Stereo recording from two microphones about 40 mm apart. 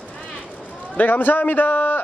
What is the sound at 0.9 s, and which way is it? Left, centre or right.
A man's voice, left.